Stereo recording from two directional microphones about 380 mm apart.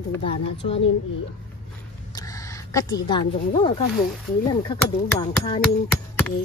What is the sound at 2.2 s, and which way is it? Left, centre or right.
A woman's voice, centre.